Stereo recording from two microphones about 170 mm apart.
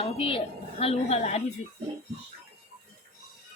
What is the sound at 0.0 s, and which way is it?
A woman's voice, 35° left (ahead or behind).